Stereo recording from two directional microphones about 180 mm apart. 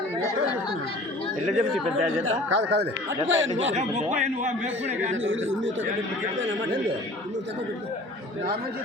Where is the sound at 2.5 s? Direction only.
70° right (ahead or behind).